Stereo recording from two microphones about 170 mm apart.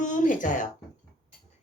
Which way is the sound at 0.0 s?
50° left (ahead or behind).